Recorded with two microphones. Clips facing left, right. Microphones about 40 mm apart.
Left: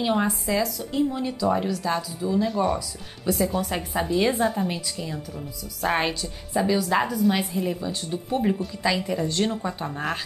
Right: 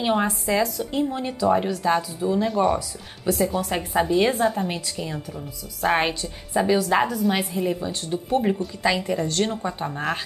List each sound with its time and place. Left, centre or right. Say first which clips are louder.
0.0 s a woman's voice: right 1 dB; centre
2.4 s a woman's voice: right 3 dB; centre
3.7 s a woman's voice: right 4 dB; centre
4.3 s a woman's voice: right 1 dB; centre
4.9 s a woman's voice: right 2 dB; centre